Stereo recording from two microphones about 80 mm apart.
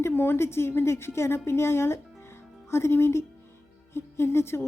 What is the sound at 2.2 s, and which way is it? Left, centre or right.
Music, left.